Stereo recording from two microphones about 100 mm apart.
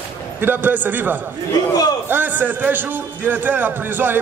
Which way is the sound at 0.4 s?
20° right (ahead or behind).